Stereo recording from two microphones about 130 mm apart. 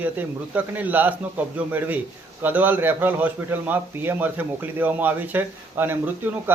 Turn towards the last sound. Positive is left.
turn(degrees=-15)  # may be behind; listen again after turning